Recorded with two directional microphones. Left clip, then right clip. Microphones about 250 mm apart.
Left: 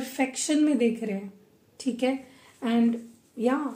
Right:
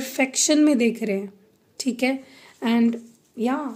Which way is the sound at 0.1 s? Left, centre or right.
Right.